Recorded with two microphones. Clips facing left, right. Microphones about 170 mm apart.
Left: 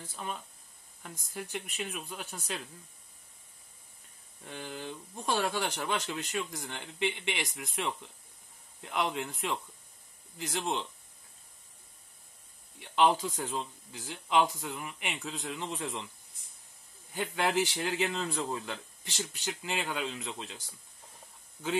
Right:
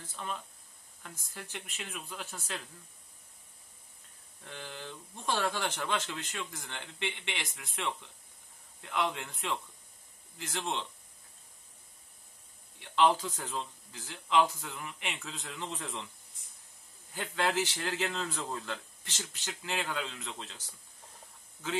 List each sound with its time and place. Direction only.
0.0 s speech: 15° left (ahead or behind)
4.5 s speech: 15° left (ahead or behind)
8.8 s speech: 15° left (ahead or behind)
12.9 s speech: 10° left (ahead or behind)
17.1 s speech: 15° left (ahead or behind)